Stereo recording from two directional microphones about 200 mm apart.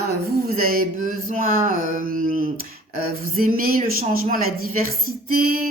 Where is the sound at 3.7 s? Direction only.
45° right (ahead or behind).